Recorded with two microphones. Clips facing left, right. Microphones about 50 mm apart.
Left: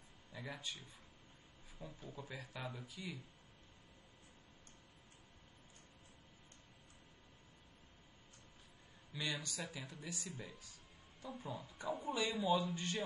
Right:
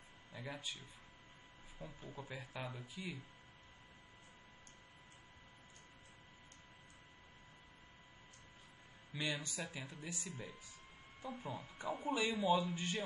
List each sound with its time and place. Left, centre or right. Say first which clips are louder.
0.3 s a sound: right 1 dB; right
1.8 s a man's voice: right 1 dB; right
9.1 s a man's voice: right 1 dB; right
10.1 s speech: even; centre
10.4 s a man's voice: right 2 dB; right